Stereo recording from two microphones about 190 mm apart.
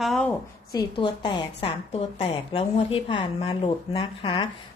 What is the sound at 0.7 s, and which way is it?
A woman's voice, 25° left (ahead or behind).